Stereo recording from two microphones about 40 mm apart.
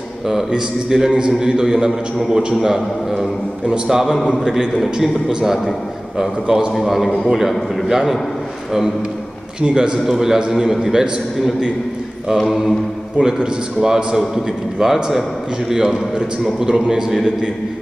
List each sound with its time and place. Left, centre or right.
0.3 s a man's voice: centre
3.6 s a man's voice: right
3.9 s a man's voice: centre
6.1 s a man's voice: centre
9.6 s a man's voice: right
10.0 s a man's voice: centre
13.2 s a man's voice: centre